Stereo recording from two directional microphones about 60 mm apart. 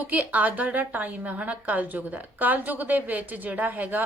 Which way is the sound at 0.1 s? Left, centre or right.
Right.